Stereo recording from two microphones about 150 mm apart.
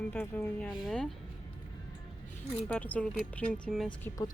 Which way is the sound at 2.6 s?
10° left (ahead or behind).